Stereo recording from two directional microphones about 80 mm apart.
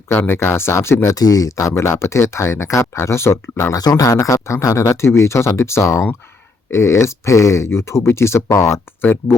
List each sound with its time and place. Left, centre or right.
0.3 s speech: left
1.2 s speech: left
3.8 s speech: left